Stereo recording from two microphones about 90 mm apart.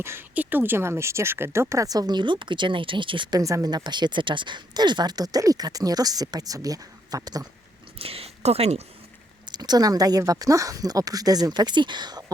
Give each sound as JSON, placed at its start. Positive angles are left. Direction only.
{"t": 0.0, "sound": "speech", "side_deg": -25}
{"t": 3.3, "sound": "speech", "side_deg": -40}
{"t": 7.9, "sound": "a sound", "side_deg": -90}
{"t": 9.5, "sound": "speech", "side_deg": -50}